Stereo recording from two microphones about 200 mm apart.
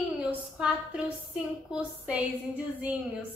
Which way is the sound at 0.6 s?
5° right (ahead or behind).